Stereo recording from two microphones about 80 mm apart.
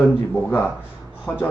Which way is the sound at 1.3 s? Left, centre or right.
Left.